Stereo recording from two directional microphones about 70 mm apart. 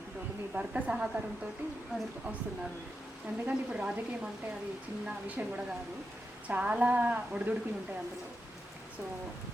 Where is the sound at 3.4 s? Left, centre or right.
Centre.